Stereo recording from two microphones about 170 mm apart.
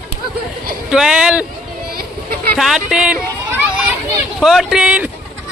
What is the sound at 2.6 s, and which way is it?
Female singing, 5° right (ahead or behind).